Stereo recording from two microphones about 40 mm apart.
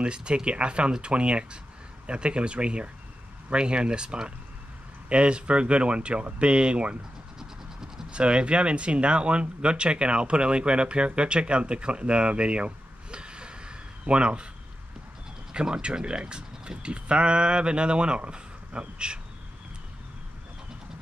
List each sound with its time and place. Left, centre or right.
0.0 s speech: right
7.3 s vehicle: centre
8.1 s speech: right
15.5 s speech: right